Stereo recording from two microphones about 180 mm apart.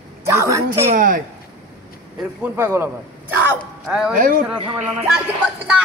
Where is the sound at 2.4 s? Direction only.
15° right (ahead or behind).